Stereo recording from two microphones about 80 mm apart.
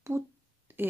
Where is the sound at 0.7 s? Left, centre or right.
Right.